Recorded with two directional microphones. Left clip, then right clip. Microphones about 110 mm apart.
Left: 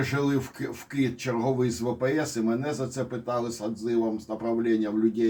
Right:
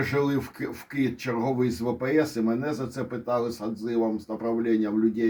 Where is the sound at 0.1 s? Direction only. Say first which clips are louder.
Right 1 dB; 35° right (ahead or behind).